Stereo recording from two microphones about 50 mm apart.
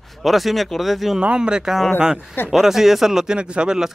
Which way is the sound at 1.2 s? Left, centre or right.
Right.